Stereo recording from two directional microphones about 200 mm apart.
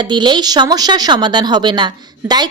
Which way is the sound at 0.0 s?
20° right (ahead or behind).